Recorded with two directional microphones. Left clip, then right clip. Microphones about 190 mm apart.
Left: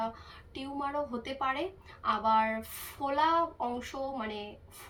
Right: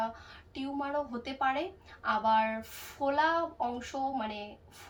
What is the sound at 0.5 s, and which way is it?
A woman's voice, centre (ahead or behind).